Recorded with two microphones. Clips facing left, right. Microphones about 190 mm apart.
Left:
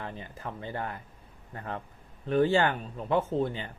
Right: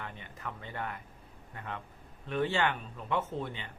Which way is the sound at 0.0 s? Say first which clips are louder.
Left 4 dB; 35° left (ahead or behind).